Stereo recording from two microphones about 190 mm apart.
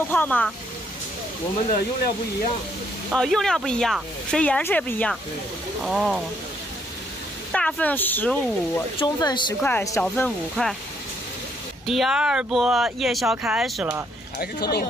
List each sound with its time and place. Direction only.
0.1 s speech: 10° left (ahead or behind)
3.1 s speech: centre (ahead or behind)
7.5 s speech: 5° left (ahead or behind)
9.0 s speech: 20° left (ahead or behind)
9.6 s speech: 10° left (ahead or behind)
11.8 s speech: centre (ahead or behind)
14.4 s speech: 55° left (ahead or behind)